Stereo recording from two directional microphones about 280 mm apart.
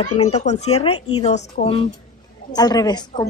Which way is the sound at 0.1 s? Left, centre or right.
Left.